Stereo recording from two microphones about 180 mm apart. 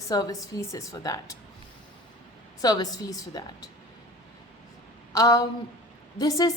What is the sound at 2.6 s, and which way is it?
Speech, 20° left (ahead or behind).